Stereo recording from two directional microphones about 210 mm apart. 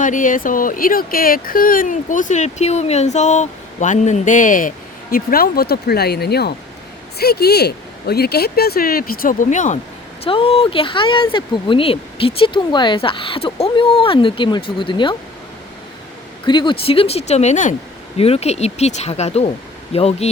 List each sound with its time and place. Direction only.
0.0 s speech: 40° left (ahead or behind)
10.2 s speech: 25° left (ahead or behind)
16.5 s speech: 25° left (ahead or behind)